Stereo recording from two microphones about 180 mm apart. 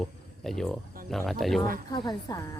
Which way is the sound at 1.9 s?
20° left (ahead or behind).